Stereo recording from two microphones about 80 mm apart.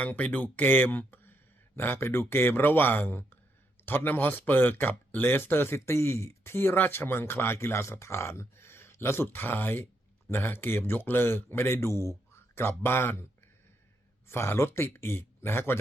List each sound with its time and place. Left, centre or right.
0.0 s speech: centre
14.3 s speech: left